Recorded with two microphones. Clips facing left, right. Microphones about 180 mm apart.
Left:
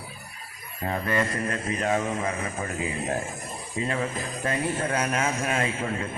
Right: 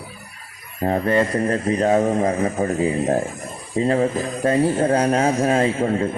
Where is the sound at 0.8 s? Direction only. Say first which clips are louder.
Right 8 dB; 40° right (ahead or behind).